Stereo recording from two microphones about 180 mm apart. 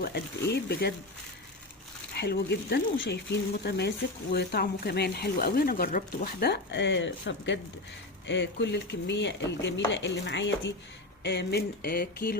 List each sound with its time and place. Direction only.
0.0 s speech: 65° left (ahead or behind)
2.1 s speech: 65° left (ahead or behind); by 10.5 s 80° left
11.2 s speech: 70° left (ahead or behind); by 12.4 s 55° left (ahead or behind)